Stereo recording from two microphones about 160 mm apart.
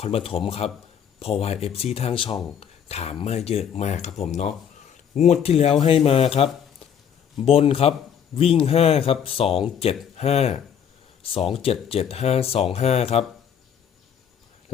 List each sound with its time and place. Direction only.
0.0 s speech: 35° left (ahead or behind)